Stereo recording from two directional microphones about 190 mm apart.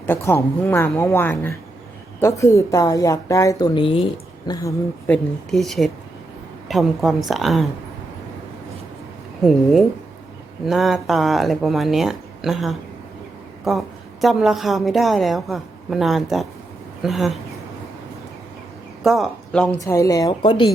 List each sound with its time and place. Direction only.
0.0 s a woman's voice: 10° left (ahead or behind)
5.0 s a woman's voice: 5° left (ahead or behind)
9.4 s a woman's voice: centre (ahead or behind)
19.0 s speech: centre (ahead or behind)
19.8 s a woman's voice: 15° left (ahead or behind)